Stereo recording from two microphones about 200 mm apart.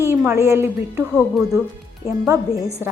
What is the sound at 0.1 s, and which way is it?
Speech, 10° right (ahead or behind).